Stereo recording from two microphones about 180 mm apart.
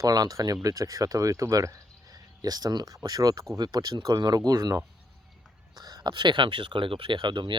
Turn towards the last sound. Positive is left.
turn(degrees=-25)  # may be behind; listen again after turning